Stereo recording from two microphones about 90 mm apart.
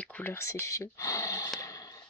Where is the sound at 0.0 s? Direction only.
15° left (ahead or behind).